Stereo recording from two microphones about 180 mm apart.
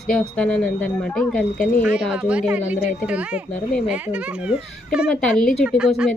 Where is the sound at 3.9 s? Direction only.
5° right (ahead or behind).